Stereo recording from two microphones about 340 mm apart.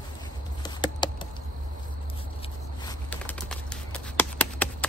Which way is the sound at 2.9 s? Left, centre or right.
Centre.